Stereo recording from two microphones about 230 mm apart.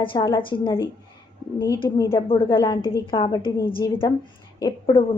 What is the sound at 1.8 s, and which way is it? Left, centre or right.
A woman's voice, centre.